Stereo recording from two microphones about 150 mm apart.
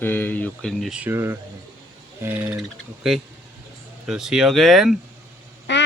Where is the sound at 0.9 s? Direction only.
15° right (ahead or behind).